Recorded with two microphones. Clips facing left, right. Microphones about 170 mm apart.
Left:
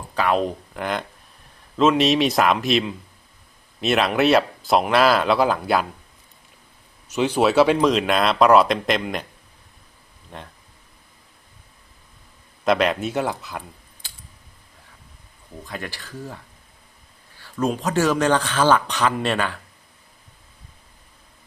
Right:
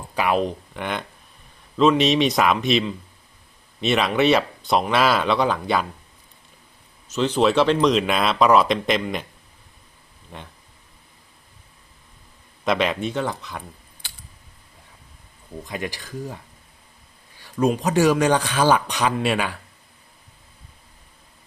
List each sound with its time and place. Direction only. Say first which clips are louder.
0.1 s a sound: left 1 dB; 10° right (ahead or behind)
0.3 s speech: even; centre (ahead or behind)
7.1 s speech: even; 10° left (ahead or behind)
10.3 s speech: left 1 dB; centre (ahead or behind)
12.6 s speech: left 2 dB; centre (ahead or behind)
15.6 s speech: right 3 dB; 15° right (ahead or behind)
17.3 s a sound: right 3 dB; 15° right (ahead or behind)
17.7 s speech: right 1 dB; 15° right (ahead or behind)